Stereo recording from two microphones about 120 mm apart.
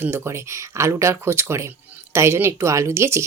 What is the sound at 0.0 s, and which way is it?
Speech, 20° right (ahead or behind).